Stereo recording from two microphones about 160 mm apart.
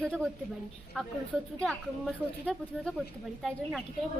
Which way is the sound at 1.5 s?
5° left (ahead or behind).